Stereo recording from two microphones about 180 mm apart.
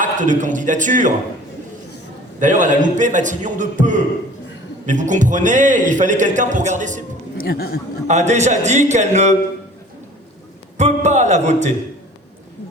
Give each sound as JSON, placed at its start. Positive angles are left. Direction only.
{"t": 0.0, "sound": "a man's voice", "side_deg": -45}
{"t": 2.4, "sound": "a man's voice", "side_deg": -45}
{"t": 7.3, "sound": "speech", "side_deg": 60}
{"t": 8.0, "sound": "a man's voice", "side_deg": -40}
{"t": 10.8, "sound": "speech", "side_deg": -40}